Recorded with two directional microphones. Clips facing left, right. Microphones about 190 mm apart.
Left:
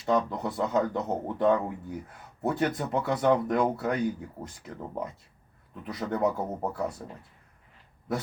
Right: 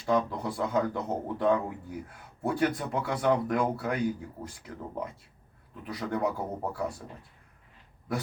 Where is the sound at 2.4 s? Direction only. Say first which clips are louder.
Even; 20° left (ahead or behind).